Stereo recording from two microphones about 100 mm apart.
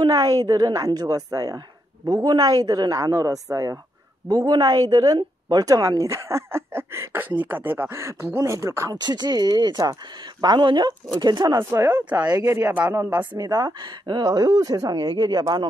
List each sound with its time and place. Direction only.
0.0 s a woman's voice: 40° right (ahead or behind)
4.3 s speech: 45° right (ahead or behind)
9.0 s speech: 45° right (ahead or behind)
12.2 s speech: 40° right (ahead or behind)
12.6 s speech: 15° right (ahead or behind)
13.4 s speech: 40° right (ahead or behind)